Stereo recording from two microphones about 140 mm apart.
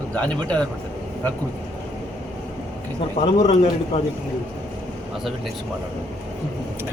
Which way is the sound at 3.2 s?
45° left (ahead or behind).